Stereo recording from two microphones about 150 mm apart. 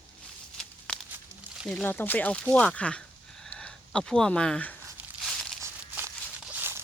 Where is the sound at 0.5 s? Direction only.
5° left (ahead or behind).